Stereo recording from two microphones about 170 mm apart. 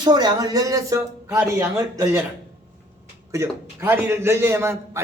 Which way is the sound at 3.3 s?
15° right (ahead or behind).